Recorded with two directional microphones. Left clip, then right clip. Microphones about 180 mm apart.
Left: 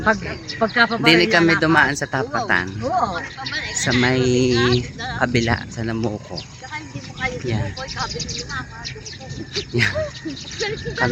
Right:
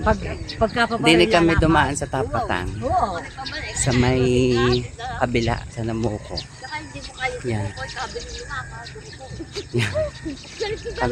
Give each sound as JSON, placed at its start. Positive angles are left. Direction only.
{"t": 0.0, "sound": "speech", "side_deg": -5}
{"t": 6.7, "sound": "a sound", "side_deg": 45}
{"t": 9.6, "sound": "speech", "side_deg": 0}